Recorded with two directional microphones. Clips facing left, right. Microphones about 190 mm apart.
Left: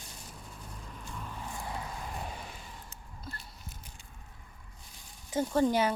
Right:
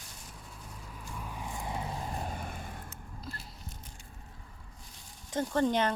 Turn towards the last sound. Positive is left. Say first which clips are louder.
# left 1 dB
turn(degrees=5)  # may be behind; listen again after turning